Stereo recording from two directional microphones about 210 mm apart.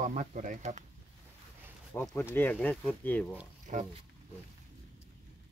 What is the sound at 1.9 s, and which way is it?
Speech, 10° left (ahead or behind).